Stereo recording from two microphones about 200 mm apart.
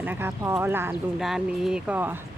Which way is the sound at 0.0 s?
10° right (ahead or behind).